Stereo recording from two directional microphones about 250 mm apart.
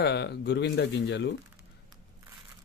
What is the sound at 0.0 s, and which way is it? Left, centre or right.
Speech, left.